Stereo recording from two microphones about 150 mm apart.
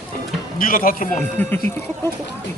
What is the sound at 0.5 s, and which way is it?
Speech, 70° left (ahead or behind).